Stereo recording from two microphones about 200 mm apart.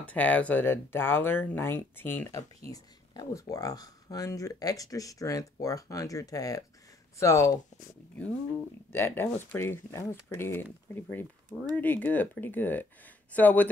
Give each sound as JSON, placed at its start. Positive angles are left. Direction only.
{"t": 0.0, "sound": "speech", "side_deg": 10}
{"t": 8.9, "sound": "speech", "side_deg": 10}